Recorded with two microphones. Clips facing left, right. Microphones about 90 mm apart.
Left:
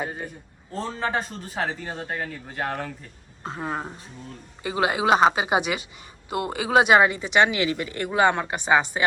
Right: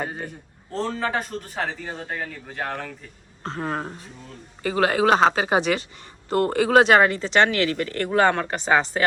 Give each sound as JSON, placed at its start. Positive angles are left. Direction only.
{"t": 0.0, "sound": "speech", "side_deg": 0}
{"t": 2.1, "sound": "speech", "side_deg": 20}
{"t": 3.4, "sound": "speech", "side_deg": 5}